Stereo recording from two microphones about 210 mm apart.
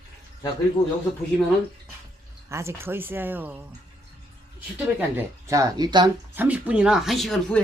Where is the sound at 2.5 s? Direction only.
10° right (ahead or behind).